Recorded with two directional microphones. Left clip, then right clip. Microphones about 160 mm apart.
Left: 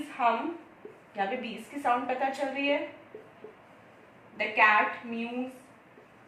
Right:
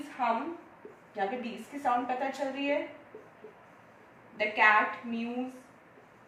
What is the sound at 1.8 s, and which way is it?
Speech, 15° left (ahead or behind).